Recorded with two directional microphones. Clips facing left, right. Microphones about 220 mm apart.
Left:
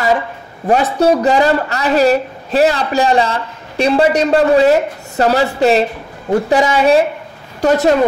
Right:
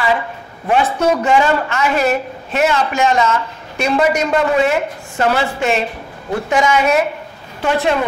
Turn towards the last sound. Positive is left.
turn(degrees=40)  # may be behind; listen again after turning